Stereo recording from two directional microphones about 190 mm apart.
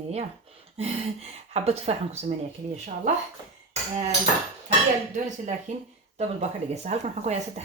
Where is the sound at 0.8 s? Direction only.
35° right (ahead or behind).